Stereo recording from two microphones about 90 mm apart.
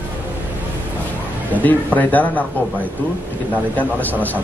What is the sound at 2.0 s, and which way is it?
Speech, 20° left (ahead or behind).